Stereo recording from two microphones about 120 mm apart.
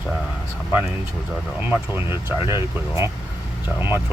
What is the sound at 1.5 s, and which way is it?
Speech, 15° right (ahead or behind).